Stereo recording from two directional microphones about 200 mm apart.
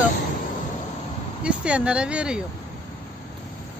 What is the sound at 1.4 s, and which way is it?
Speech, 5° right (ahead or behind).